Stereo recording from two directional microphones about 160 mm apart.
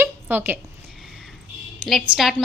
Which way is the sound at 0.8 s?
Centre (ahead or behind).